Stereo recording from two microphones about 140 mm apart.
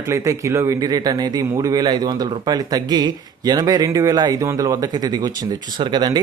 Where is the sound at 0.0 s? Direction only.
20° right (ahead or behind).